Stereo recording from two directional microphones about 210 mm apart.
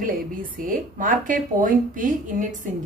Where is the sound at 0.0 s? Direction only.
40° right (ahead or behind).